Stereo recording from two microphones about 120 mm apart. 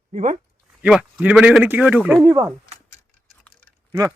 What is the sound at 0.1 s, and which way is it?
Speech, 75° right (ahead or behind).